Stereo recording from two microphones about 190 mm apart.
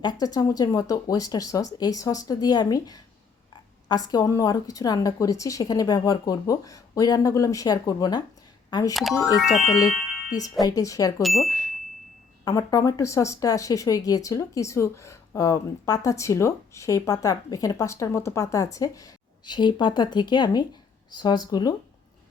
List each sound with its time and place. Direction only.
0.0 s a woman's voice: 20° left (ahead or behind)
11.2 s speech: centre (ahead or behind)
12.5 s a woman's voice: 20° left (ahead or behind)